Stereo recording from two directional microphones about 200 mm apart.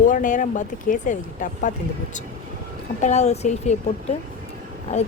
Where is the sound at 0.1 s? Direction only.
40° left (ahead or behind).